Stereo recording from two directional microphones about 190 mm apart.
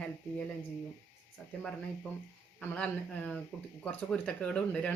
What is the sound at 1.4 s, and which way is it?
Speech, 5° left (ahead or behind).